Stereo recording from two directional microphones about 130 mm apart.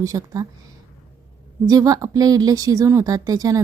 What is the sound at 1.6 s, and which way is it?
A woman's voice, 30° right (ahead or behind).